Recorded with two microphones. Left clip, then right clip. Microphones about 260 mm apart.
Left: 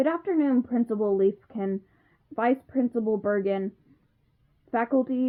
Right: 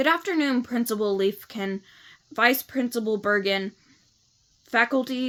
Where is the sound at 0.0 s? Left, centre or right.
Centre.